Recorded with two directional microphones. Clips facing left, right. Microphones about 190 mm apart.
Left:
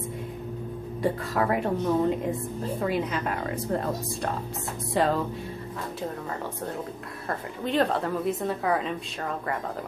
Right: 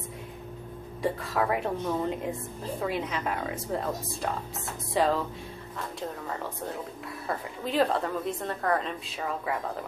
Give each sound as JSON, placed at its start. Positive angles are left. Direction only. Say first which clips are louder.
{"t": 1.0, "sound": "a woman's voice", "louder": "left 2 dB", "side_deg": 0}
{"t": 7.2, "sound": "a woman's voice", "louder": "left 2 dB", "side_deg": 0}